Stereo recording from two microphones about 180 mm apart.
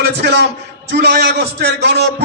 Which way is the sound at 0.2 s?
65° right (ahead or behind).